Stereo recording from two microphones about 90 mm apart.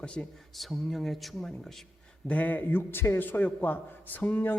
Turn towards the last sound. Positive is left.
turn(degrees=20)  # may be behind; listen again after turning